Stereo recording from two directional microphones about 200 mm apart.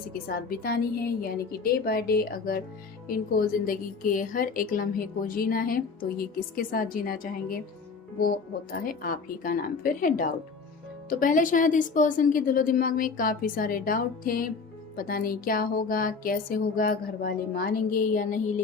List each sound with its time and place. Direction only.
0.1 s a woman's voice: 45° left (ahead or behind)